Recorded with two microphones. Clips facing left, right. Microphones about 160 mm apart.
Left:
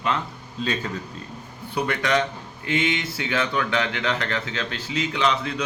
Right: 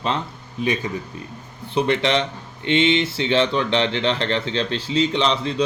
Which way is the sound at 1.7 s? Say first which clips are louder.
Right 4 dB; 25° right (ahead or behind).